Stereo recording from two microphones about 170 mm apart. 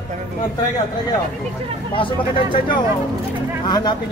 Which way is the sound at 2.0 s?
30° left (ahead or behind).